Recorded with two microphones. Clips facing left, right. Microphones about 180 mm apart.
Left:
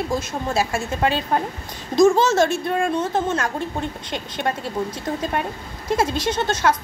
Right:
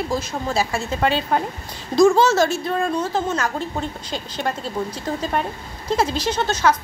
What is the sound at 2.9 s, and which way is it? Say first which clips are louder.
Speech: left 1 dB; 25° left (ahead or behind).